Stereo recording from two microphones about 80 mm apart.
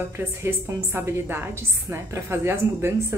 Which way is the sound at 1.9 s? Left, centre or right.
Right.